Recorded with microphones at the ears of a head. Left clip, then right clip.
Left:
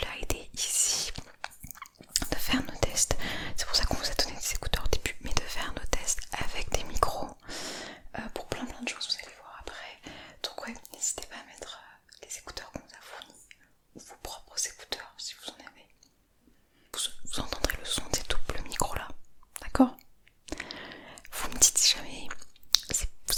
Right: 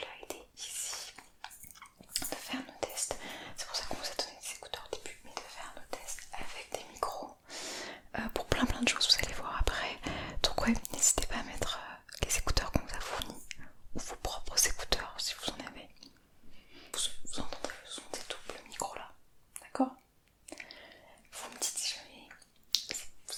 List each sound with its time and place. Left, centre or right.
0.0 s whispering: left
8.5 s whispering: right
17.3 s whispering: left